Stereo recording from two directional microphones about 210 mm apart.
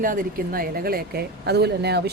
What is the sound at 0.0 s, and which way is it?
Speech, 40° right (ahead or behind).